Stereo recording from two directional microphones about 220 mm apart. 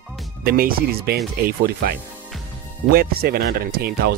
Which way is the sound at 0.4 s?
40° right (ahead or behind).